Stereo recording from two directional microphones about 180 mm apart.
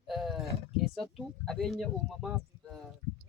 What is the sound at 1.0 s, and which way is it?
Speech, centre (ahead or behind).